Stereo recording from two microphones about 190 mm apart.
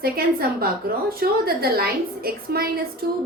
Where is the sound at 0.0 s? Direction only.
50° right (ahead or behind).